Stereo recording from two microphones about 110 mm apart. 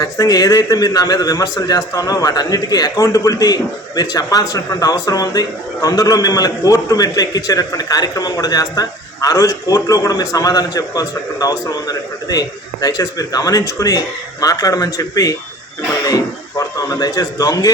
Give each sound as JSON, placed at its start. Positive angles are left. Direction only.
{"t": 0.0, "sound": "a man's voice", "side_deg": 35}